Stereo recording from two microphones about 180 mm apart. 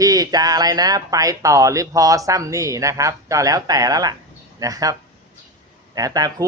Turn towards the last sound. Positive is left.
turn(degrees=-20)  # may be behind; listen again after turning